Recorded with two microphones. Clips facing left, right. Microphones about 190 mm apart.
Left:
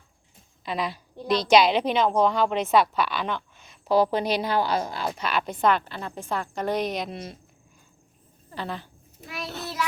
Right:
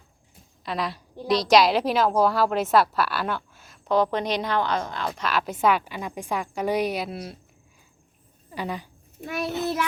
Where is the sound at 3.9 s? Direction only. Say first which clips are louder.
Left 1 dB; 10° left (ahead or behind).